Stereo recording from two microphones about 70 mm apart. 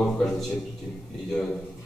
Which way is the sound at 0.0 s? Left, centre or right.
Centre.